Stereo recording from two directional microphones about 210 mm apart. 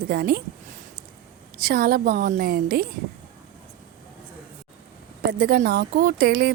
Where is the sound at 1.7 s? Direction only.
45° right (ahead or behind).